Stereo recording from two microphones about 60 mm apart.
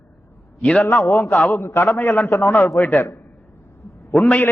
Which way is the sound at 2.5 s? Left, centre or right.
Left.